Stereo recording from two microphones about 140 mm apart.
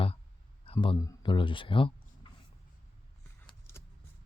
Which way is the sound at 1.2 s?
35° left (ahead or behind).